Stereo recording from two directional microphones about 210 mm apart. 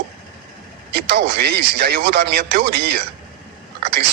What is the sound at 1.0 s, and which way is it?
Speech, 55° right (ahead or behind).